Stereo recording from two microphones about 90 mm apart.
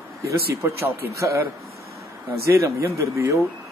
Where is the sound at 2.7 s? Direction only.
35° right (ahead or behind).